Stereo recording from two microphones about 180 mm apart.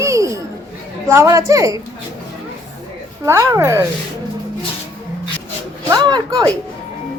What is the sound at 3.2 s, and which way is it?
Speech, 15° right (ahead or behind).